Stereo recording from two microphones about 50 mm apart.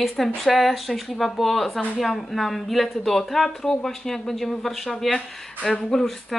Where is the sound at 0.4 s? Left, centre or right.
Centre.